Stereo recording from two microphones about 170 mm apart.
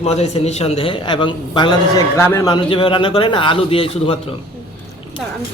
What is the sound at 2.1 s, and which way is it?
Speech, 15° left (ahead or behind).